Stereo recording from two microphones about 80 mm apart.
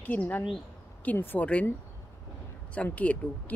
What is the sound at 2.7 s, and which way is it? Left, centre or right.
Speech, centre.